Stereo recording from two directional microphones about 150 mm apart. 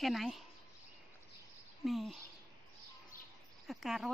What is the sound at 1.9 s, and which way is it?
Speech, centre (ahead or behind).